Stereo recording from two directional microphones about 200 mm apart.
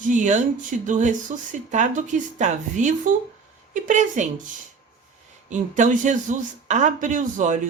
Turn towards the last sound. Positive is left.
turn(degrees=-40)  # may be behind; listen again after turning